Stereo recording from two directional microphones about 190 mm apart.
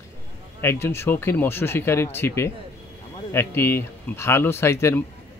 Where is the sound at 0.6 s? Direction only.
15° left (ahead or behind).